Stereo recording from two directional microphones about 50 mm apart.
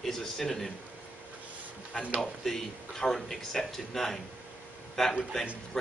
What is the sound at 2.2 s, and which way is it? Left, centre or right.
Speech, centre.